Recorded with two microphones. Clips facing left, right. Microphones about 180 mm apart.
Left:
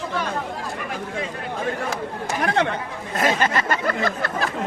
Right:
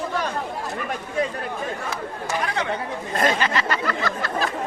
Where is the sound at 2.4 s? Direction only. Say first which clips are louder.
Left 9 dB; 60° left (ahead or behind).